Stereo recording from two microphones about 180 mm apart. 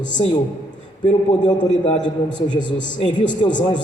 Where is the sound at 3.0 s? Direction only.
25° left (ahead or behind).